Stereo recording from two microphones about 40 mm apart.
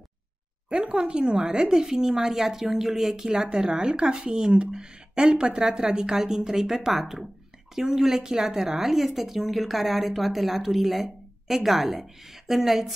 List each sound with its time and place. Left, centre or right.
0.7 s speech: right; by 3.3 s centre
3.3 s speech: right